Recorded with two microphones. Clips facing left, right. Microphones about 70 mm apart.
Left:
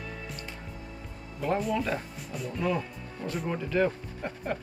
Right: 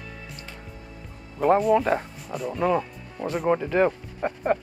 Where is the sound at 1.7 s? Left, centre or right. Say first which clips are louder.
Right 9 dB; right.